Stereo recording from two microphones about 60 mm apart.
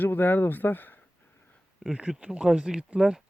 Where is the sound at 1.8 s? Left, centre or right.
Centre.